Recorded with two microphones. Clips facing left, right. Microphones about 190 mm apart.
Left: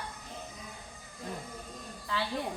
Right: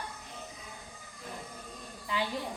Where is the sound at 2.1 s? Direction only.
15° right (ahead or behind).